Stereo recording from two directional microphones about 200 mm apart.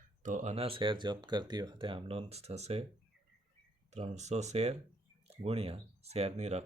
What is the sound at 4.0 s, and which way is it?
Speech, 35° right (ahead or behind).